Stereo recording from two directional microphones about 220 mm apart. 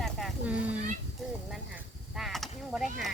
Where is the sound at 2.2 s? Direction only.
Centre (ahead or behind).